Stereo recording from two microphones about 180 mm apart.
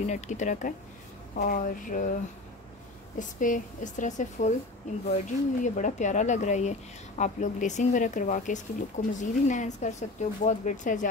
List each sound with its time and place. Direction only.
0.0 s speech: 40° left (ahead or behind)
3.2 s speech: 45° left (ahead or behind)